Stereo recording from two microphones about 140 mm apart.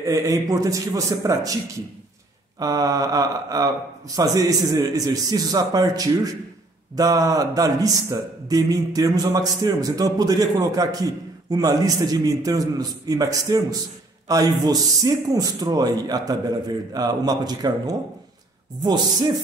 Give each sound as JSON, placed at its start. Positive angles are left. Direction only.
{"t": 0.0, "sound": "a man's voice", "side_deg": -25}
{"t": 2.6, "sound": "a man's voice", "side_deg": -25}